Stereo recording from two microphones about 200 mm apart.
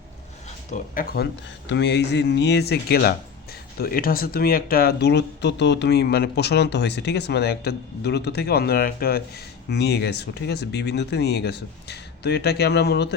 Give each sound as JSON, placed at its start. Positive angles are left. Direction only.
{"t": 0.7, "sound": "speech", "side_deg": 45}